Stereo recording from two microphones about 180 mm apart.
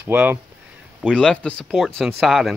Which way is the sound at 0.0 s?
10° right (ahead or behind).